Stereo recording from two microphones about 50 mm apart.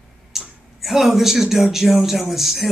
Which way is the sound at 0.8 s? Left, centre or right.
Centre.